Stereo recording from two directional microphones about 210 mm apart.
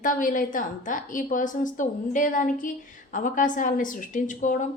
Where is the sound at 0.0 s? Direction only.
40° left (ahead or behind).